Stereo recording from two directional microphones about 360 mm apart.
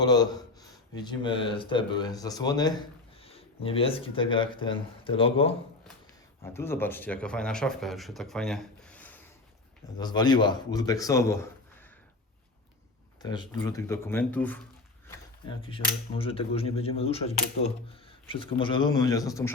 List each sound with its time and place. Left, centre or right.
0.0 s speech: centre
13.2 s speech: centre
15.0 s a sound: centre
15.8 s speech: centre